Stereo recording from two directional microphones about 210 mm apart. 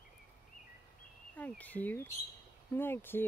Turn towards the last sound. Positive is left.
turn(degrees=10)  # may be behind; listen again after turning